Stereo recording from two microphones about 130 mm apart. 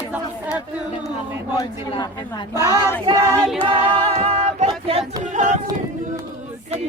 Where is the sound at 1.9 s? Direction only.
35° left (ahead or behind).